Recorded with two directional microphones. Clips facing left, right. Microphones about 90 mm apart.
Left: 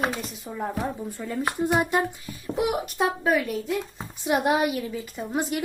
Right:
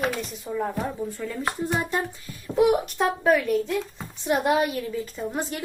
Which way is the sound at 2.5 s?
5° left (ahead or behind).